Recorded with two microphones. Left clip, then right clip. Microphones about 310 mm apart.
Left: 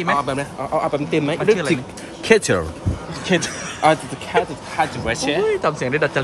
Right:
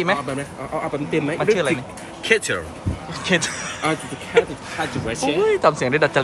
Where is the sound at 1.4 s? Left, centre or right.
Centre.